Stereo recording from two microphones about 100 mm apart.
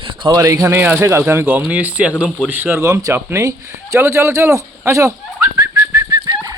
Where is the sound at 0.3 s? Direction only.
30° right (ahead or behind).